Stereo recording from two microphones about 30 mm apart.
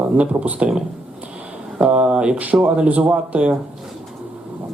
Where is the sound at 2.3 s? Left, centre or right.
Right.